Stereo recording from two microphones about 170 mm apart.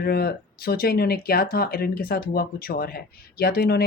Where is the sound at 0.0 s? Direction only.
65° left (ahead or behind).